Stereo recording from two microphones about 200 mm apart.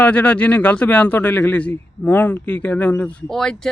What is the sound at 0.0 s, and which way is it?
Speech, 5° left (ahead or behind).